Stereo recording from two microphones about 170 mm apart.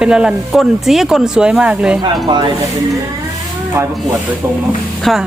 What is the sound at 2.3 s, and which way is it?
Speech, 25° right (ahead or behind).